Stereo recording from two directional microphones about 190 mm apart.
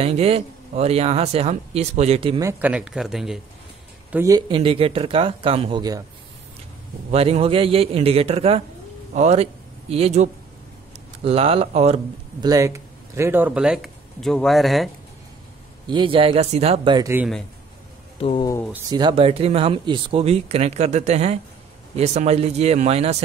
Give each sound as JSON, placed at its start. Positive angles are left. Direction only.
{"t": 0.0, "sound": "speech", "side_deg": -30}
{"t": 2.4, "sound": "speech", "side_deg": -10}
{"t": 4.1, "sound": "speech", "side_deg": -15}
{"t": 7.1, "sound": "speech", "side_deg": -30}
{"t": 12.4, "sound": "speech", "side_deg": -15}
{"t": 15.9, "sound": "speech", "side_deg": -25}
{"t": 18.1, "sound": "speech", "side_deg": 30}
{"t": 18.9, "sound": "speech", "side_deg": -20}